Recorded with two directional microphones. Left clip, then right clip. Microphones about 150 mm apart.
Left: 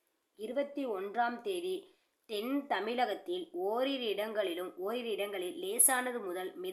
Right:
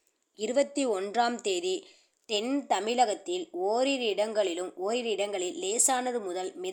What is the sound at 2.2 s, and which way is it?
A woman's voice, 35° right (ahead or behind).